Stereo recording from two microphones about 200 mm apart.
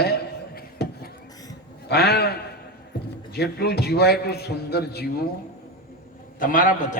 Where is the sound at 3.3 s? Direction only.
55° left (ahead or behind).